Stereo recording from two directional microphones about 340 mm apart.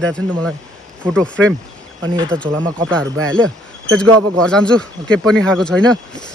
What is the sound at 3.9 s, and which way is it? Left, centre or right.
Speech, centre.